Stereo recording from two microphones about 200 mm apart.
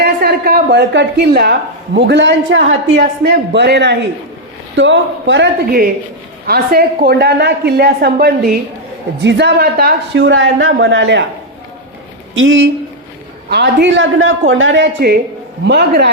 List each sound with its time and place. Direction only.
0.0 s a woman's voice: 50° right (ahead or behind); by 11.3 s 65° right (ahead or behind)
12.3 s a man's voice: 75° right (ahead or behind)
13.5 s speech: 60° right (ahead or behind)